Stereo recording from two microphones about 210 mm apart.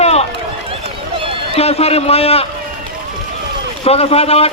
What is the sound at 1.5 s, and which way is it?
Speech, 30° left (ahead or behind).